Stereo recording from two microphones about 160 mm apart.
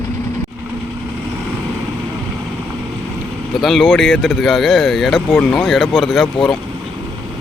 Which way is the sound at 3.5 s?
Centre (ahead or behind).